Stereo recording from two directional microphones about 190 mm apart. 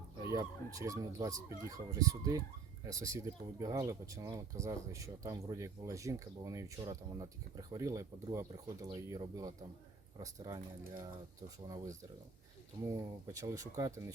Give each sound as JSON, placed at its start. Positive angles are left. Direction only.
{"t": 0.3, "sound": "speech", "side_deg": -15}
{"t": 13.2, "sound": "speech", "side_deg": -15}